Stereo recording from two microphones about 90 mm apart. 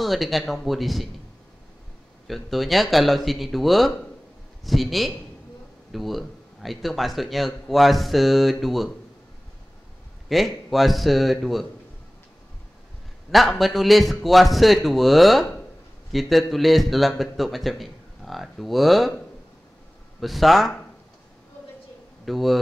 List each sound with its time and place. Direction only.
0.0 s a man's voice: centre (ahead or behind)
2.2 s a man's voice: centre (ahead or behind)
10.2 s a man's voice: centre (ahead or behind)
13.3 s a man's voice: centre (ahead or behind)
20.2 s a man's voice: centre (ahead or behind)
22.2 s speech: centre (ahead or behind)